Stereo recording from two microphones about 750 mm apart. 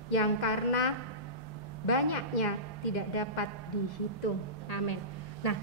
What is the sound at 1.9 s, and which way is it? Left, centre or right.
A woman's voice, left.